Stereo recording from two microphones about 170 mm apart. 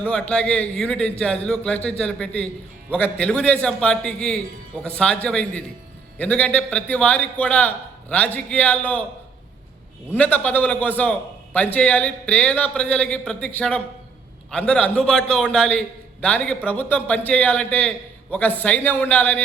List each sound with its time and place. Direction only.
0.0 s a man's voice: 5° left (ahead or behind)
10.1 s a man's voice: 10° left (ahead or behind)